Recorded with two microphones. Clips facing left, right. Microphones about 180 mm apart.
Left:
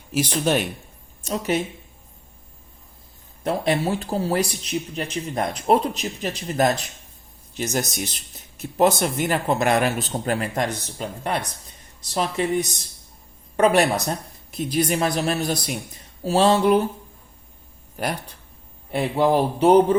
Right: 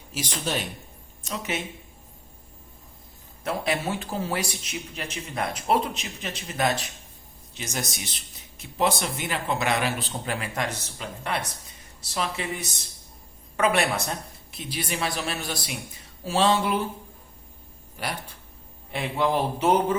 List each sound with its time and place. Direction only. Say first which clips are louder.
1.3 s speech: left 8 dB; 35° left (ahead or behind)
3.4 s speech: left 5 dB; 35° left (ahead or behind)
7.9 s speech: left 8 dB; centre (ahead or behind)
9.0 s speech: left 7 dB; 45° left (ahead or behind)
17.9 s speech: left 6 dB; 45° left (ahead or behind)